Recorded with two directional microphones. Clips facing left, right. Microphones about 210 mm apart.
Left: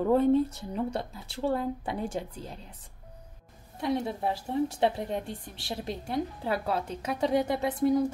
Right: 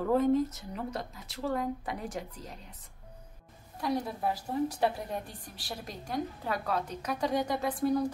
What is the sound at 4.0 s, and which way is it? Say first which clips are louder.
A woman's voice: left 2 dB; 25° left (ahead or behind).